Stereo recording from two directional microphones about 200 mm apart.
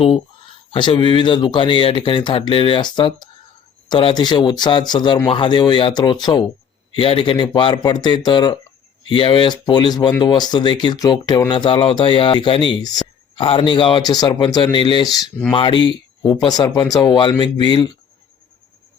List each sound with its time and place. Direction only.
0.7 s speech: 25° left (ahead or behind)
15.1 s speech: 5° left (ahead or behind)
15.5 s speech: 25° left (ahead or behind)